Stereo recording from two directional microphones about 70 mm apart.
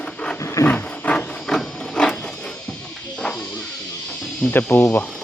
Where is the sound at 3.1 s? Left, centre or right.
Centre.